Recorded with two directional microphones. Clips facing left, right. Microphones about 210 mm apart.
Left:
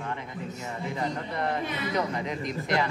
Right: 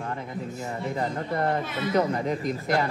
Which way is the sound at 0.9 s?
45° right (ahead or behind).